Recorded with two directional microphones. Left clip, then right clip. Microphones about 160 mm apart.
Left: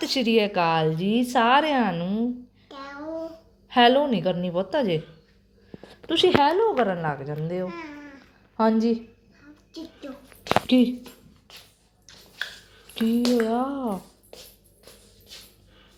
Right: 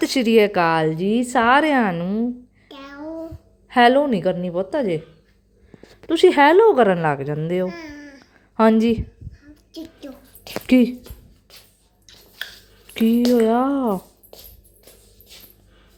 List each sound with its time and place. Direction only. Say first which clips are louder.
0.0 s a woman's voice: right 6 dB; 50° right (ahead or behind)
2.6 s child singing: even; 25° right (ahead or behind)
3.7 s a woman's voice: right 4 dB; 35° right (ahead or behind)
4.4 s a woman's voice: right 2 dB; 30° right (ahead or behind)
6.1 s a woman's voice: right 6 dB; 35° right (ahead or behind)
6.4 s a woman's voice: right 8 dB; 80° right
7.7 s babbling: right 3 dB; 10° right (ahead or behind)
8.5 s a woman's voice: right 6 dB; 75° right (ahead or behind)
12.9 s speech: right 6 dB; 60° right (ahead or behind)